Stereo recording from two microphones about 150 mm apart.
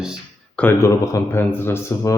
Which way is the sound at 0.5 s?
10° left (ahead or behind).